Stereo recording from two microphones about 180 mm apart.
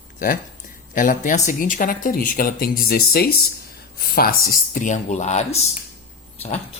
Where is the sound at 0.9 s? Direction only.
45° left (ahead or behind).